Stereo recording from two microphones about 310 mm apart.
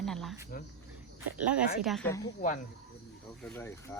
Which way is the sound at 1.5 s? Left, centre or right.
Centre.